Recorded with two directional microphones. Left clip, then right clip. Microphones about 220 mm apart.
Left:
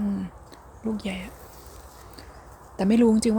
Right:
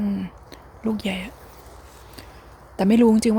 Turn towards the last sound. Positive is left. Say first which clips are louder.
# right 3 dB
turn(degrees=-15)  # may be behind; listen again after turning